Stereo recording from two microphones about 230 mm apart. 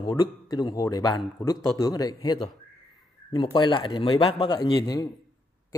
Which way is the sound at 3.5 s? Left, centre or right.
Left.